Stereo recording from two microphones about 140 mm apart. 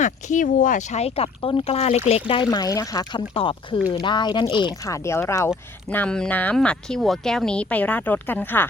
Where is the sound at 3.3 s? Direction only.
40° left (ahead or behind); by 8.7 s 15° left (ahead or behind).